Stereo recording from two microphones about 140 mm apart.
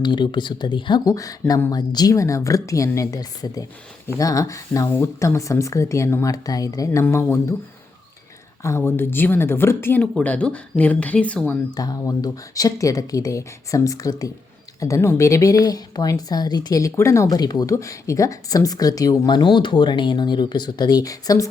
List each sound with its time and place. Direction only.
0.0 s speech: 30° left (ahead or behind)
8.6 s speech: 20° left (ahead or behind)
11.7 s speech: 25° left (ahead or behind)